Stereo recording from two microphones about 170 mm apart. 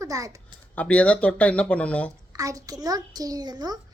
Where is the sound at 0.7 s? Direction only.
5° left (ahead or behind).